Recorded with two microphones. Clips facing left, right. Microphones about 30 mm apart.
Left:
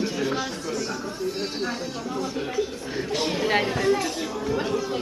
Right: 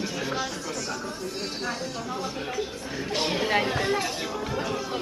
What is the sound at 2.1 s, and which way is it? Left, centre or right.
Speech, centre.